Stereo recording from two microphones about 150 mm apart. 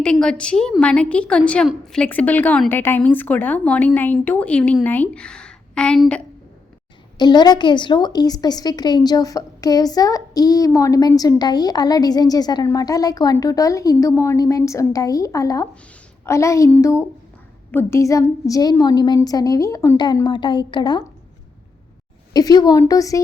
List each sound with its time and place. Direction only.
0.0 s a woman's voice: 5° left (ahead or behind)
7.2 s a woman's voice: 30° left (ahead or behind)
22.3 s a woman's voice: 25° left (ahead or behind)